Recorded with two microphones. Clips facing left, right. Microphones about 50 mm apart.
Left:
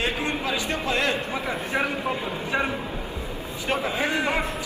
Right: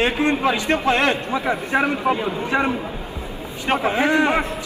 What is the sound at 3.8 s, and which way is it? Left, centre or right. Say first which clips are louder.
Speech: right 9 dB; right.